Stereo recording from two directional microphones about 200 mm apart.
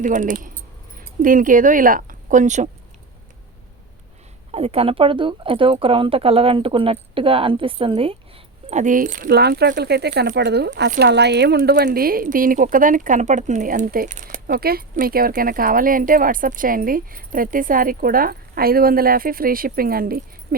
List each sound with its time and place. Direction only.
0.0 s speech: 40° right (ahead or behind)
4.5 s speech: 30° right (ahead or behind)
8.7 s speech: 40° right (ahead or behind)